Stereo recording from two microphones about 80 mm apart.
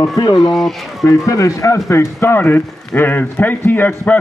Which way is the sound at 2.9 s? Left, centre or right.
Left.